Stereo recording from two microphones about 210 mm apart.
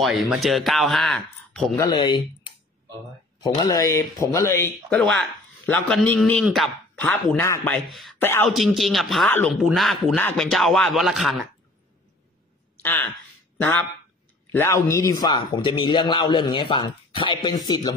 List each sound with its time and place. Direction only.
0.0 s speech: centre (ahead or behind)
1.8 s a man's voice: 20° left (ahead or behind)
4.8 s speech: 5° left (ahead or behind)
8.2 s speech: 10° left (ahead or behind)
8.5 s speech: centre (ahead or behind)
12.8 s a man's voice: 10° left (ahead or behind)